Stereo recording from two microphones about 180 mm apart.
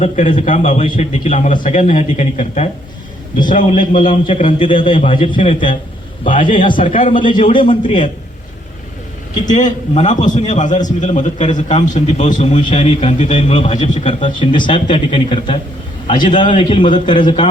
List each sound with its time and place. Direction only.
0.0 s a man's voice: 35° left (ahead or behind)
3.3 s a man's voice: 50° left (ahead or behind)
3.7 s speech: 25° left (ahead or behind)
9.5 s a man's voice: 45° left (ahead or behind); by 17.5 s 25° left (ahead or behind)